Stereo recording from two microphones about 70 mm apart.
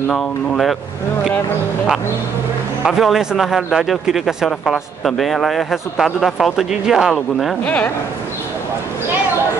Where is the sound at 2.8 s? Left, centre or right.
Centre.